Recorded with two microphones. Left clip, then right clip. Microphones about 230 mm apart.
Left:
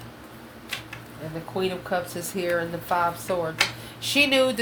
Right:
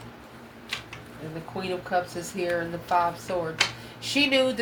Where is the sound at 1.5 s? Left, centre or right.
Left.